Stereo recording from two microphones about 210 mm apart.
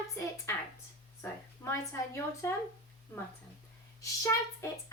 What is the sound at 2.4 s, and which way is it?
Speech, 10° left (ahead or behind).